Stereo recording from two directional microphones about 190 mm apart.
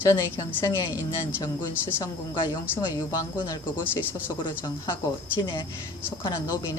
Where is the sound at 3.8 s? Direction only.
10° left (ahead or behind).